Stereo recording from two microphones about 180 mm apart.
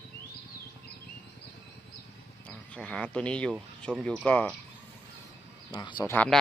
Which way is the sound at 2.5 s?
5° left (ahead or behind).